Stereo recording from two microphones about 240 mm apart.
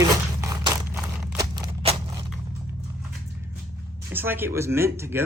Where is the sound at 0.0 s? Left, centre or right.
Centre.